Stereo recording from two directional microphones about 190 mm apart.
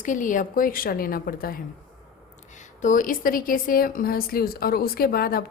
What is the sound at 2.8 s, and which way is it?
A woman's voice, 45° left (ahead or behind).